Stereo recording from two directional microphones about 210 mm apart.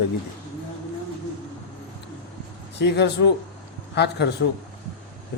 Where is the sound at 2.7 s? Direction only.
55° left (ahead or behind).